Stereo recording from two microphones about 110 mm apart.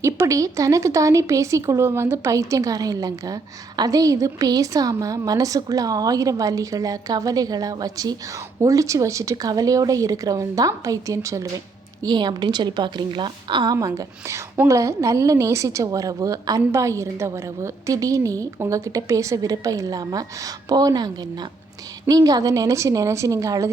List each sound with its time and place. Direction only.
0.0 s a woman's voice: 30° right (ahead or behind)
12.0 s a woman's voice: 40° right (ahead or behind)
13.7 s a woman's voice: 30° right (ahead or behind)